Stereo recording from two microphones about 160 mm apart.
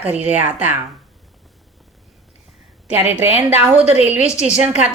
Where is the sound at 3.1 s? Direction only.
15° right (ahead or behind).